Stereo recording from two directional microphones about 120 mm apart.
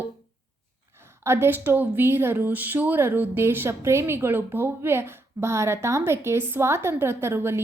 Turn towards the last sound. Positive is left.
turn(degrees=-20)  # may be behind; listen again after turning